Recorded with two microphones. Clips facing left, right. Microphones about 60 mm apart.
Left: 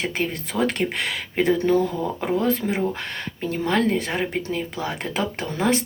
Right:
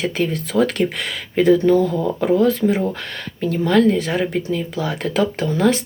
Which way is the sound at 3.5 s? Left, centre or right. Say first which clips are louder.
Right 6 dB; left.